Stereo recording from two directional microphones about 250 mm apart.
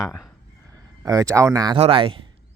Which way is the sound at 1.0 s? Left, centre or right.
Centre.